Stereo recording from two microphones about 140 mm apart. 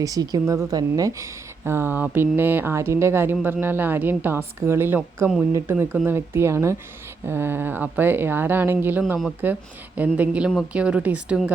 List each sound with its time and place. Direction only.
0.0 s a woman's voice: 25° right (ahead or behind); by 11.5 s 10° right (ahead or behind)